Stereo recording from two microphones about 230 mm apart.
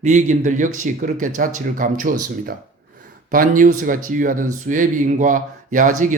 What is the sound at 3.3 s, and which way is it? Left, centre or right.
Speech, right.